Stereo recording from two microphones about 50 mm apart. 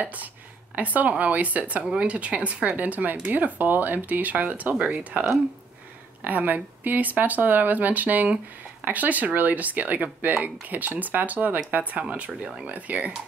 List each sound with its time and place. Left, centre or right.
0.0 s speech: right
6.2 s speech: right